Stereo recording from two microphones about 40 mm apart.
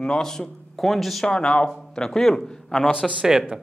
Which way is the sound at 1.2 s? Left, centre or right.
Left.